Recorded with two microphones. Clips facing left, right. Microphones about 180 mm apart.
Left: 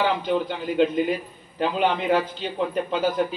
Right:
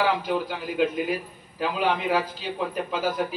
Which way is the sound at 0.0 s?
25° left (ahead or behind).